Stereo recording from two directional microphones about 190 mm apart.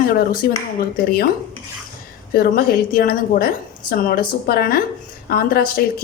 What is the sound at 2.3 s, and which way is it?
A woman's voice, 50° left (ahead or behind).